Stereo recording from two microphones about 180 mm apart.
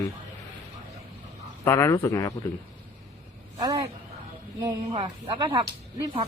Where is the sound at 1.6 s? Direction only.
15° left (ahead or behind).